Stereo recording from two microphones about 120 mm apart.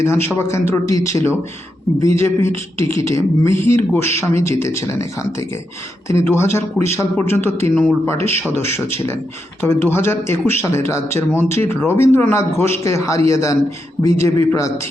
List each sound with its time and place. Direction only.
0.0 s speech: 20° left (ahead or behind)
6.1 s speech: 20° left (ahead or behind)